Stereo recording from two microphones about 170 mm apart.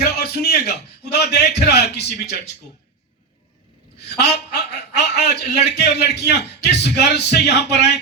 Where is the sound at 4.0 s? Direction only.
75° left (ahead or behind).